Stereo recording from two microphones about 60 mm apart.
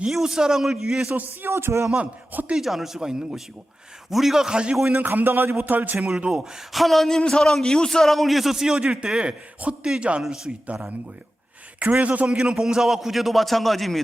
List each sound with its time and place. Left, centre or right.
0.1 s a man's voice: centre
1.1 s a man's voice: right
1.5 s a man's voice: right
2.0 s a man's voice: right
2.6 s a man's voice: centre
4.9 s a man's voice: right
6.0 s a man's voice: centre
7.2 s a man's voice: centre
10.7 s a man's voice: right; by 14.0 s centre